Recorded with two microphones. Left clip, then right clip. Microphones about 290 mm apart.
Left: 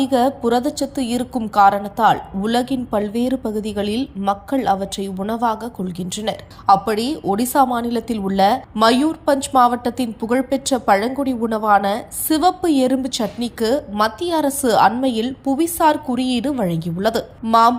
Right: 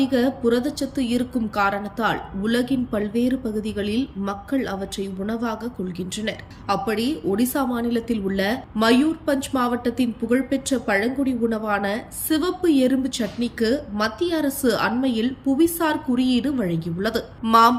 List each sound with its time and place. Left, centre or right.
0.0 s a woman's voice: centre